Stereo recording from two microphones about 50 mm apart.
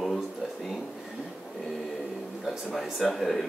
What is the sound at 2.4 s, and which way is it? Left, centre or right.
Speech, centre.